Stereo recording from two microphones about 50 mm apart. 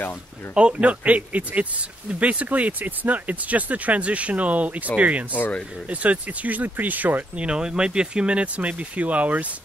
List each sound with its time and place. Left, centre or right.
0.6 s speech: right
7.4 s speech: centre